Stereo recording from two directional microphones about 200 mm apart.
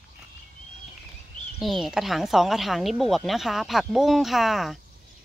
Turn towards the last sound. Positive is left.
turn(degrees=0)  # may be behind; listen again after turning